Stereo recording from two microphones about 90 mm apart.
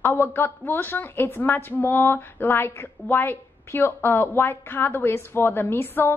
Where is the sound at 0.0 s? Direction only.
25° left (ahead or behind).